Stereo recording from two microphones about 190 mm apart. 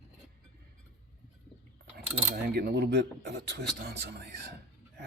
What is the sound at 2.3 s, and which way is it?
Speech, 55° right (ahead or behind).